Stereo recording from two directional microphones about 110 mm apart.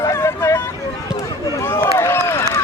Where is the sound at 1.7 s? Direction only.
20° left (ahead or behind).